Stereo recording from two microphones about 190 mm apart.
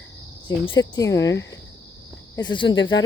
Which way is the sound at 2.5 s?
25° left (ahead or behind).